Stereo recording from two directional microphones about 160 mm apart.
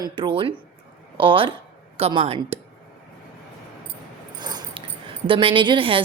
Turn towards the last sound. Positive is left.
turn(degrees=-35)  # may be behind; listen again after turning